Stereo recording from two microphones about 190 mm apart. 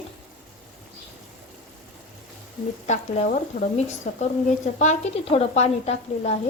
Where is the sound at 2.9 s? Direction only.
40° left (ahead or behind).